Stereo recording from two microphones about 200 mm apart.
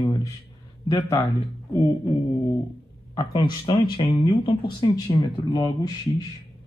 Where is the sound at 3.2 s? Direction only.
25° left (ahead or behind).